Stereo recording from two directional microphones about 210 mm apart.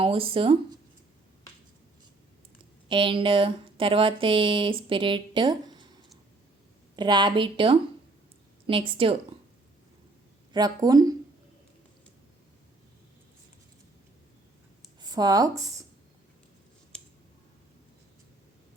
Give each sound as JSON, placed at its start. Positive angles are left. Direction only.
{"t": 0.0, "sound": "speech", "side_deg": -25}
{"t": 2.9, "sound": "speech", "side_deg": -25}
{"t": 10.5, "sound": "speech", "side_deg": -20}
{"t": 15.0, "sound": "speech", "side_deg": -20}
{"t": 16.9, "sound": "a sound", "side_deg": 5}